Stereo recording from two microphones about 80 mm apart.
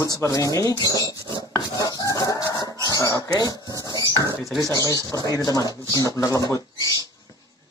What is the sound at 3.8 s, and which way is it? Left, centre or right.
Dishes, left.